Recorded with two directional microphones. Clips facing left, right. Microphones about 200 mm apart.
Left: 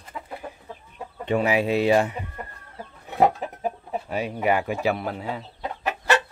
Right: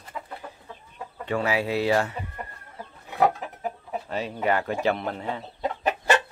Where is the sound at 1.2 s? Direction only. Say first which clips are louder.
Left 4 dB; 20° left (ahead or behind).